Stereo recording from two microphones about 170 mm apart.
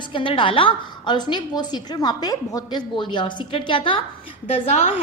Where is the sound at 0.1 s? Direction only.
30° left (ahead or behind).